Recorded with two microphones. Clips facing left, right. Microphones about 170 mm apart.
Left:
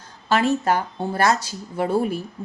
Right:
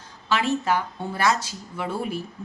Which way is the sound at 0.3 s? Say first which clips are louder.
Left 4 dB; 45° left (ahead or behind).